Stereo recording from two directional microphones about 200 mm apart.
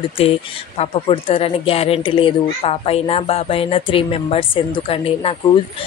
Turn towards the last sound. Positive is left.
turn(degrees=30)  # may be behind; listen again after turning